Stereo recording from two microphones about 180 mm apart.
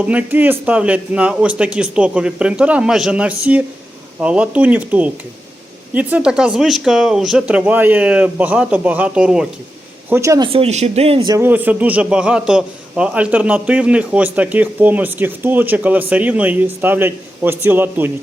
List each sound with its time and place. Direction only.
0.0 s a man's voice: 10° right (ahead or behind)
10.1 s a man's voice: 15° right (ahead or behind)
10.5 s speech: 35° right (ahead or behind)
11.3 s a man's voice: 10° right (ahead or behind)